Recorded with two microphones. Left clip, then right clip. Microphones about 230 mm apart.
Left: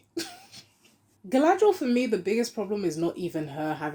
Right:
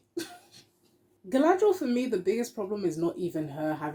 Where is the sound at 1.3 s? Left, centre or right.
Left.